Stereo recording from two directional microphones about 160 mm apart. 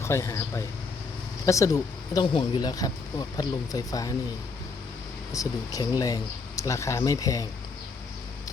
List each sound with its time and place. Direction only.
0.0 s a man's voice: 15° left (ahead or behind)
5.3 s speech: 20° left (ahead or behind)